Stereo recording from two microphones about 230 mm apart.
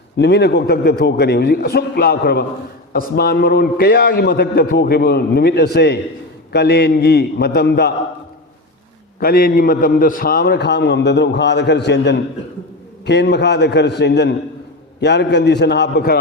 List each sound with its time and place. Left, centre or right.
0.2 s a man's voice: left
9.2 s a man's voice: left